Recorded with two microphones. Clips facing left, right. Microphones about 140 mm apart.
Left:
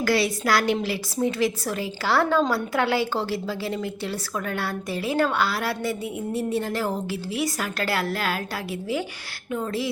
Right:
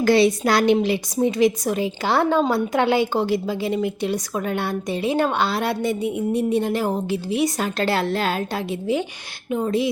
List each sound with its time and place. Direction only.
0.0 s a woman's voice: 20° right (ahead or behind)